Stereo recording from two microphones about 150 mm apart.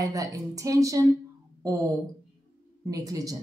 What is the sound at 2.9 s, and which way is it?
Speech, 25° right (ahead or behind).